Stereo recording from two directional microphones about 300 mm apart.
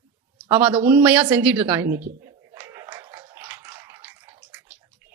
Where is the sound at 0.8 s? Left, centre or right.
Centre.